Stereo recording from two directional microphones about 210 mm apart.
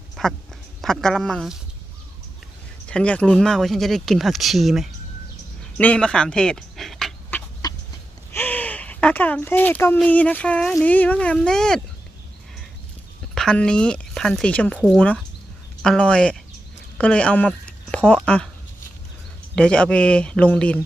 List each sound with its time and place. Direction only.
0.2 s speech: 5° left (ahead or behind)
2.8 s speech: 5° left (ahead or behind)
5.7 s a sound: 5° left (ahead or behind)
7.6 s chicken: 20° left (ahead or behind)
8.3 s speech: 10° left (ahead or behind)
13.3 s speech: 5° left (ahead or behind)
19.5 s speech: 5° left (ahead or behind)